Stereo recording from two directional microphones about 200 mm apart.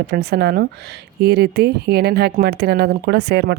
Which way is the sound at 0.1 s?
55° right (ahead or behind).